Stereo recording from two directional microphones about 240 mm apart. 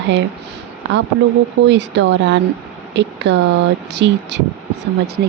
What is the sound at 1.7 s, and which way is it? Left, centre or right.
Speech, right.